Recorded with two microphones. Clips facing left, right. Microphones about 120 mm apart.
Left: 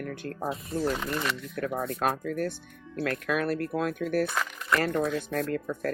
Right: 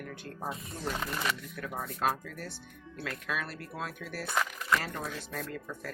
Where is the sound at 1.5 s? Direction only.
60° left (ahead or behind).